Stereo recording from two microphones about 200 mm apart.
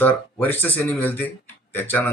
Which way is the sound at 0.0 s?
10° left (ahead or behind).